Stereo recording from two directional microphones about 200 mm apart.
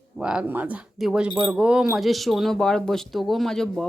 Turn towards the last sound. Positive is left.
turn(degrees=0)  # may be behind; listen again after turning